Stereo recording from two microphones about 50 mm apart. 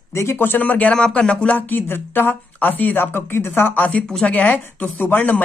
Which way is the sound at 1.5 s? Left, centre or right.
Left.